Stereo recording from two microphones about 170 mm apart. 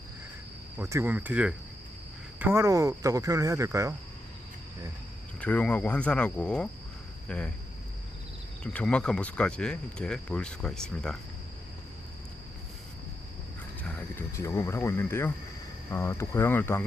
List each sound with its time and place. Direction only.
0.8 s speech: 15° right (ahead or behind)
5.4 s speech: 10° left (ahead or behind)
8.6 s speech: 5° left (ahead or behind)
13.8 s speech: 10° left (ahead or behind)